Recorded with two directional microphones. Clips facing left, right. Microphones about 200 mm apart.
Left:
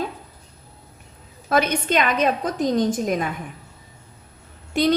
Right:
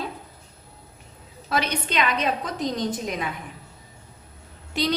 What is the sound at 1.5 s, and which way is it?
A woman's voice, 50° left (ahead or behind).